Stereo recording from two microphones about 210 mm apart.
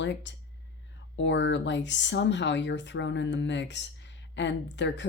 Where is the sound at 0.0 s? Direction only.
60° left (ahead or behind).